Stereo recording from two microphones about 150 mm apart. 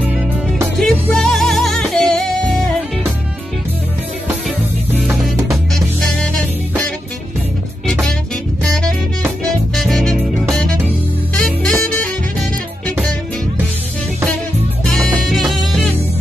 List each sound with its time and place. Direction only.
0.1 s music: 10° right (ahead or behind)
0.7 s music: centre (ahead or behind)
5.0 s music: centre (ahead or behind)
7.8 s music: centre (ahead or behind)
9.8 s music: centre (ahead or behind)
11.3 s music: 5° left (ahead or behind)
14.9 s music: centre (ahead or behind)